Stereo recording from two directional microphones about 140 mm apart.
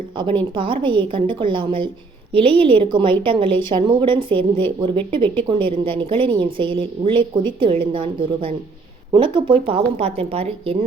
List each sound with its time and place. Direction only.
0.2 s speech: 35° right (ahead or behind)